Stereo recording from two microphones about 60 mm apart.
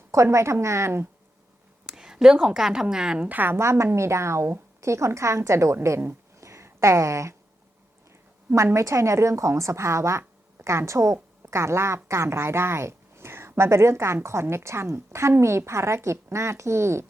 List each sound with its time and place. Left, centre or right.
0.1 s a woman's voice: right
1.9 s a woman's voice: centre
3.2 s a woman's voice: right
3.6 s a woman's voice: right
4.8 s a woman's voice: right
6.4 s a sound: right
8.5 s a woman's voice: right